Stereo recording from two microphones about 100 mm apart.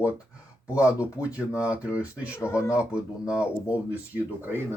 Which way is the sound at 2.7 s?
10° right (ahead or behind).